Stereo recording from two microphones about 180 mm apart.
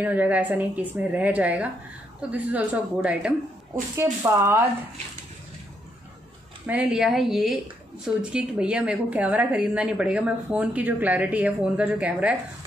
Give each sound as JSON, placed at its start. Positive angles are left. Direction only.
{"t": 0.0, "sound": "a woman's voice", "side_deg": -10}
{"t": 3.9, "sound": "a woman's voice", "side_deg": -15}
{"t": 6.6, "sound": "a woman's voice", "side_deg": -10}